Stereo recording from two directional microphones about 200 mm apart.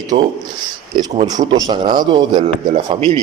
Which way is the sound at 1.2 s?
20° right (ahead or behind).